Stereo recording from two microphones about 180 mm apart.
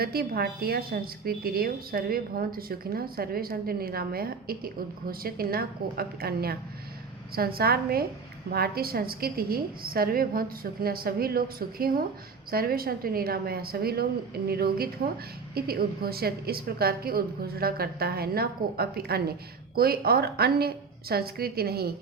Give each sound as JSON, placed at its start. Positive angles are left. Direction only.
{"t": 0.0, "sound": "a woman's voice", "side_deg": -60}